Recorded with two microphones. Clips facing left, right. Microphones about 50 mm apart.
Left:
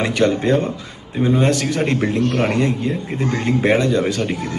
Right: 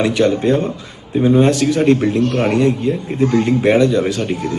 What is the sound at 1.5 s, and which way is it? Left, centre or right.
A man's voice, left.